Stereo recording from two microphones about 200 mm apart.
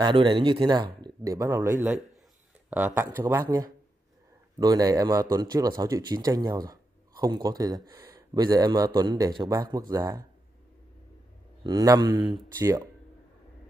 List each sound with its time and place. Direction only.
0.0 s speech: 25° right (ahead or behind)
11.6 s speech: 15° right (ahead or behind)